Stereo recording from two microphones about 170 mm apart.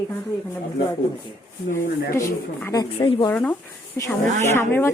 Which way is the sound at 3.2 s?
10° left (ahead or behind).